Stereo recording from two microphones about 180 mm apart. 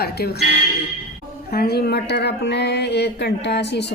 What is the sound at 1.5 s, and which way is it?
Speech, 60° left (ahead or behind).